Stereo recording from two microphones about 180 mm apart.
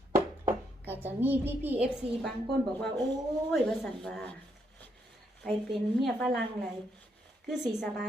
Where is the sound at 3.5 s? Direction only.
Centre (ahead or behind).